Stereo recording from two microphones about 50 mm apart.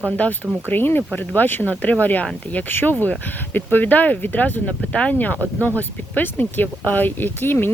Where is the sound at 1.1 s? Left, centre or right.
Left.